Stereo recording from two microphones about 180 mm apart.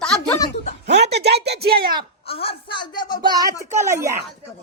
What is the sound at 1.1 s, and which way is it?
Speech, 65° right (ahead or behind).